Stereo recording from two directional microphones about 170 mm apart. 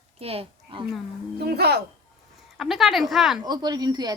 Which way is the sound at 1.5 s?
70° right (ahead or behind).